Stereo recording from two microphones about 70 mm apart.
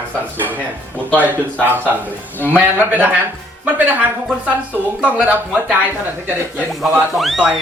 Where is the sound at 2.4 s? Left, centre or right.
Right.